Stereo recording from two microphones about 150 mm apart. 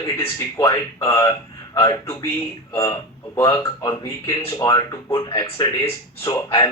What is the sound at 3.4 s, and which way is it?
Speech, 30° left (ahead or behind).